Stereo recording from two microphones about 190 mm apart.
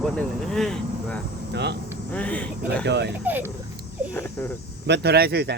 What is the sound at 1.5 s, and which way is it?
Speech, 60° right (ahead or behind).